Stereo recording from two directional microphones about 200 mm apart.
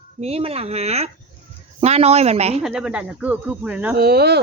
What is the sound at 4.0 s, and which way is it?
Speech, 50° right (ahead or behind).